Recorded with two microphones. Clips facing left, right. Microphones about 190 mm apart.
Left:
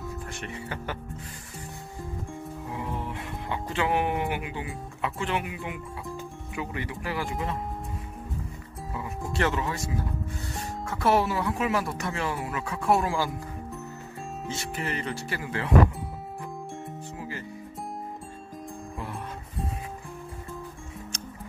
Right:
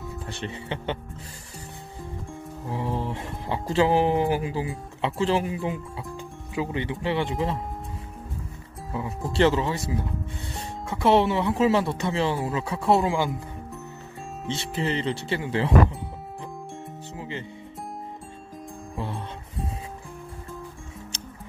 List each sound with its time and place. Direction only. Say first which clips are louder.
0.3 s speech: right 3 dB; 30° right (ahead or behind)
2.7 s speech: right 6 dB; 30° right (ahead or behind)
9.4 s speech: right 7 dB; 30° right (ahead or behind)
14.5 s speech: right 6 dB; 25° right (ahead or behind)
17.2 s music: right 4 dB; 25° right (ahead or behind)